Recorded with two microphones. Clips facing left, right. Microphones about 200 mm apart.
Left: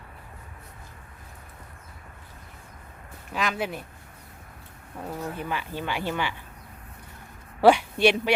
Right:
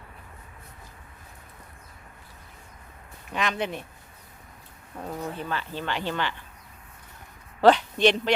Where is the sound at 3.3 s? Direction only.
Centre (ahead or behind).